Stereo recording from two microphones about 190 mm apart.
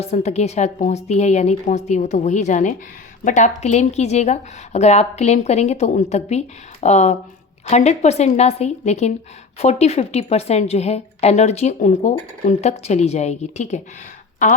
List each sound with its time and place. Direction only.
0.0 s a woman's voice: 35° left (ahead or behind)